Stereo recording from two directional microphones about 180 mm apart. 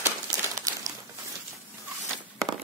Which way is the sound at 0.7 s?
20° right (ahead or behind).